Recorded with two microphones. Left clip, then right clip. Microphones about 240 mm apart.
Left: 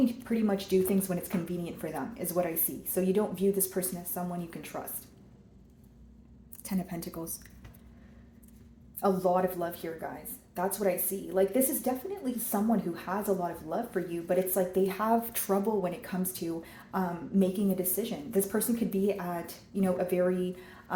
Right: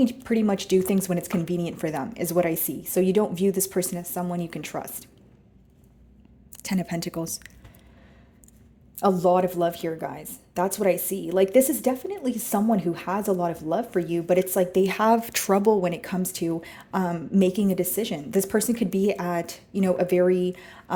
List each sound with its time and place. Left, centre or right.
0.0 s speech: right
6.6 s speech: right
9.0 s speech: right